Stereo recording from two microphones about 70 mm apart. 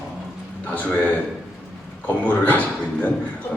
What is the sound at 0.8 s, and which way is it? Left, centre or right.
Speech, centre.